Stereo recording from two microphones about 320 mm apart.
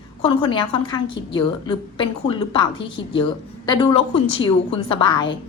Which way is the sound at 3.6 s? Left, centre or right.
Centre.